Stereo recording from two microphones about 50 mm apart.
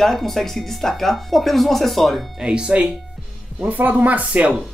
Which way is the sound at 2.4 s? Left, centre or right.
Right.